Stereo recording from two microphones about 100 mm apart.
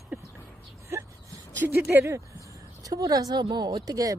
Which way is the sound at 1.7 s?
20° right (ahead or behind).